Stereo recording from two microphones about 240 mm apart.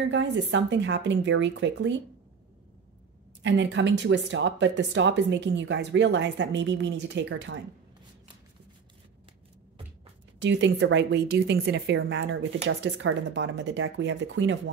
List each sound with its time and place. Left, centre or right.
0.0 s speech: right
3.4 s speech: right
10.4 s speech: right